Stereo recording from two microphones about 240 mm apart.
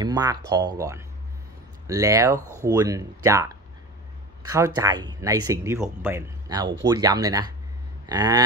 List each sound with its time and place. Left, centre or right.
0.0 s speech: centre